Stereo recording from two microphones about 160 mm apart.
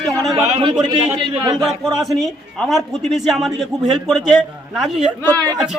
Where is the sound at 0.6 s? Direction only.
25° right (ahead or behind).